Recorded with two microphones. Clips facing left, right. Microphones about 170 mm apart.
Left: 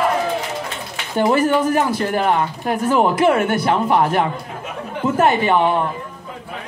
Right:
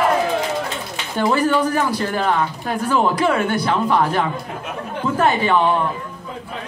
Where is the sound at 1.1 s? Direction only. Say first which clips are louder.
Left 2 dB; 20° left (ahead or behind).